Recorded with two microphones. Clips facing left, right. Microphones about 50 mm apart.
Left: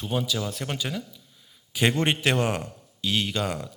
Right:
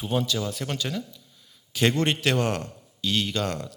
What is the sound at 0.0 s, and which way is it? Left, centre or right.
A man's voice, centre.